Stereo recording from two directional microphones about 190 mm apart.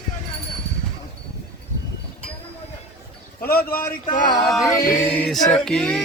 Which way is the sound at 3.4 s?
50° left (ahead or behind).